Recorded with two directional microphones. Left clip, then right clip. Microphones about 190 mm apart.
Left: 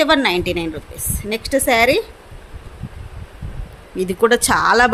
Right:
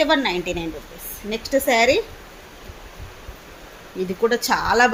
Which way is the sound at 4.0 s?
35° left (ahead or behind).